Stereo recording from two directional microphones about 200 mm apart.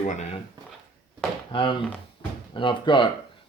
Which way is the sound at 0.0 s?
35° left (ahead or behind).